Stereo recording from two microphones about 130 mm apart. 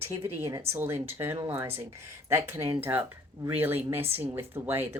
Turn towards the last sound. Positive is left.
turn(degrees=-15)  # may be behind; listen again after turning